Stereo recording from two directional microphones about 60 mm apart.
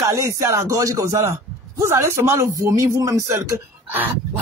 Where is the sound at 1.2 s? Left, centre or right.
Right.